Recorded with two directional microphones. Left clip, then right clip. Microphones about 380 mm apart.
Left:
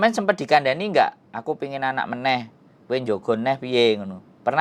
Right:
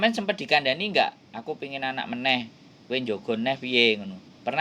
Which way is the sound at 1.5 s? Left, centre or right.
Left.